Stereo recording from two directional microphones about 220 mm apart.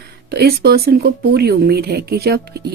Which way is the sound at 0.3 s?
45° right (ahead or behind).